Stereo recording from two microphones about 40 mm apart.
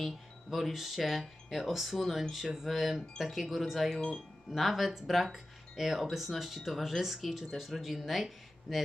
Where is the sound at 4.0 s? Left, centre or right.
Left.